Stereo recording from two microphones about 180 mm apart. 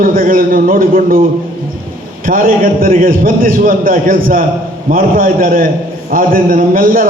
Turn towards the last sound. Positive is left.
turn(degrees=-50)  # may be behind; listen again after turning